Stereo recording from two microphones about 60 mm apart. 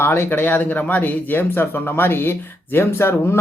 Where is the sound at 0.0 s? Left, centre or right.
Left.